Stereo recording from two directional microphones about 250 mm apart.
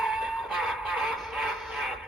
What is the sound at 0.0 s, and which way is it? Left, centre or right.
Music, centre.